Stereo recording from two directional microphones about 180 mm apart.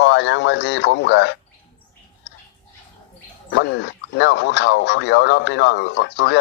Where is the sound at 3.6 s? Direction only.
75° left (ahead or behind).